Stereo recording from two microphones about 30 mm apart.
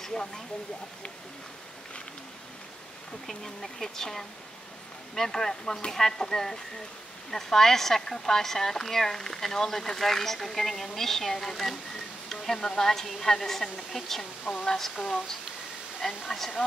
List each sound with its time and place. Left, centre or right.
0.0 s speech: left
3.3 s speech: centre
12.3 s a sound: centre
12.5 s speech: left
12.8 s speech: centre